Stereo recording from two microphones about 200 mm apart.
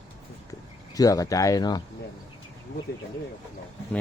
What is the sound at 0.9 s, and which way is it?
Speech, 20° left (ahead or behind).